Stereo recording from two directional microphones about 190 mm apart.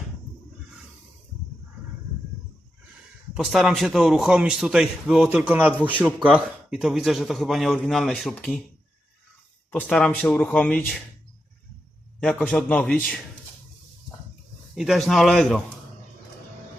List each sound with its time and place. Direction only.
3.3 s a man's voice: centre (ahead or behind)
9.8 s speech: 5° left (ahead or behind)
12.2 s a man's voice: 5° left (ahead or behind)
14.8 s a man's voice: centre (ahead or behind)